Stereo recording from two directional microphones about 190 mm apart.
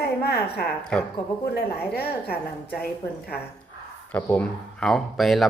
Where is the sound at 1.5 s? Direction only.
55° left (ahead or behind).